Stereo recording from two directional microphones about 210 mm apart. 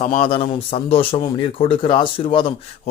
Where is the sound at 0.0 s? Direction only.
30° left (ahead or behind).